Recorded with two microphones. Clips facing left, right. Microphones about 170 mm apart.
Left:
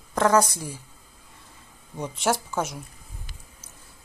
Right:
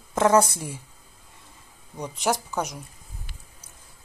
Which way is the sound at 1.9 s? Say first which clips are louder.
Left 1 dB; 5° left (ahead or behind).